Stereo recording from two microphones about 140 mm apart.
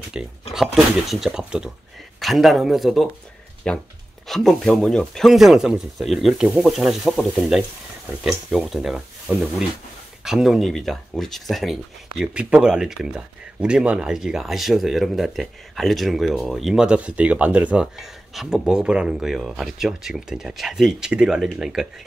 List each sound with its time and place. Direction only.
0.1 s speech: 5° right (ahead or behind)